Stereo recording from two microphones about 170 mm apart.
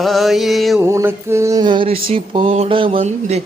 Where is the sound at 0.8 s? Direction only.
15° right (ahead or behind).